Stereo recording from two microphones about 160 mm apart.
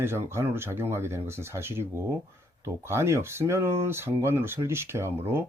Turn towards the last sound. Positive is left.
turn(degrees=-15)  # may be behind; listen again after turning